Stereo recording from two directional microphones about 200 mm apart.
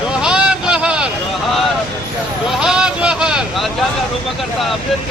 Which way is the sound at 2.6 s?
5° right (ahead or behind).